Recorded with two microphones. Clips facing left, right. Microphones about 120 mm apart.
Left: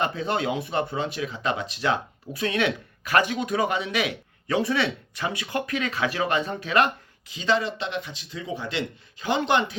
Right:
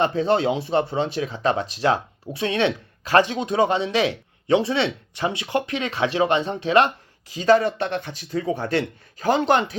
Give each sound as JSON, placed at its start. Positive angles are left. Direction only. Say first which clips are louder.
{"t": 0.0, "sound": "speech", "louder": "right 6 dB", "side_deg": -35}
{"t": 7.3, "sound": "speech", "louder": "right 7 dB", "side_deg": -45}
{"t": 8.3, "sound": "speech", "louder": "right 9 dB", "side_deg": -45}